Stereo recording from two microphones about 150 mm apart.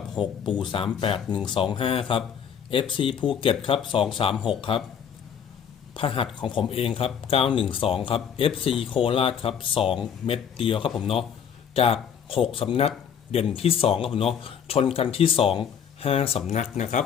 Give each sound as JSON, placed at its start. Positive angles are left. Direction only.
{"t": 0.1, "sound": "speech", "side_deg": 30}
{"t": 5.9, "sound": "speech", "side_deg": 35}